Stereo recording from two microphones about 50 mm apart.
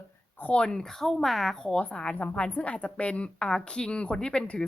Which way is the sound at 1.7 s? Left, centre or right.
Left.